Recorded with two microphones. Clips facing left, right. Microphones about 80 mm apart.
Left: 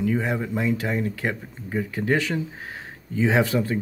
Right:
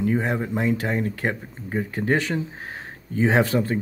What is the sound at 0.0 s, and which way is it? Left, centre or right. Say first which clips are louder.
Speech: right 1 dB; right.